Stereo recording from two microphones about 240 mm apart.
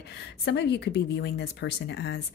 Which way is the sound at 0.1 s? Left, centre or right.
Left.